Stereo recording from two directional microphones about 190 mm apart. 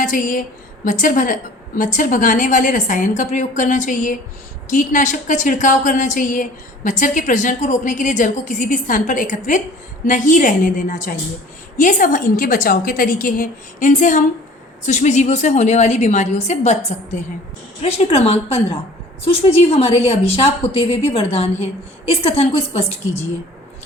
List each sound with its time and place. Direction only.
0.0 s a woman's voice: 45° left (ahead or behind)